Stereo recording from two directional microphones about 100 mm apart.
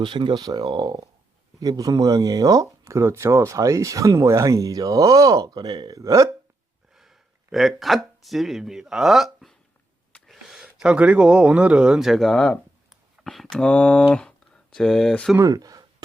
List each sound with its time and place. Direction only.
0.0 s speech: 50° right (ahead or behind); by 6.3 s 30° right (ahead or behind)
6.9 s speech: 5° right (ahead or behind)
15.4 s a sound: 35° right (ahead or behind)